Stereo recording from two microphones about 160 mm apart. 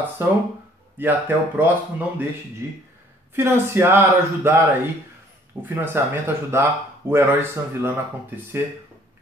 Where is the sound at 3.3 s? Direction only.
15° right (ahead or behind).